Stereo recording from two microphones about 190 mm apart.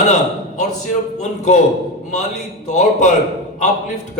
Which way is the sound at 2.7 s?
40° left (ahead or behind).